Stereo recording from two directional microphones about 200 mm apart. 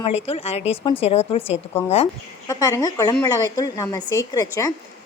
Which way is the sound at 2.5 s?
15° left (ahead or behind).